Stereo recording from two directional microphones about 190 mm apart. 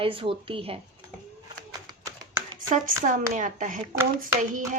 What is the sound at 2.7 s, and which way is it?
Speech, 45° right (ahead or behind).